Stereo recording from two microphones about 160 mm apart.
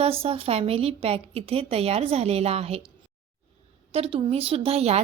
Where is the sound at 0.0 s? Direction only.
35° right (ahead or behind).